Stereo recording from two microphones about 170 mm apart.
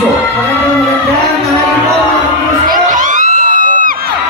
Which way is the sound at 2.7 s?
50° right (ahead or behind).